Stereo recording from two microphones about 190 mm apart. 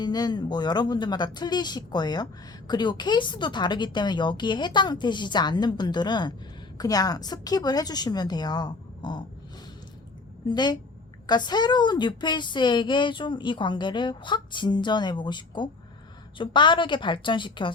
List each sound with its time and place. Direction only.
0.0 s a woman's voice: 20° left (ahead or behind)
10.5 s a woman's voice: 20° left (ahead or behind)